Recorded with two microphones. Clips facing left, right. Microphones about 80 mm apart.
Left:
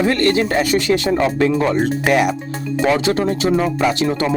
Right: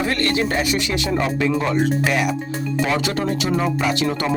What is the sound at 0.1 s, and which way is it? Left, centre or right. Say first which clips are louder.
Speech: left 4 dB; left.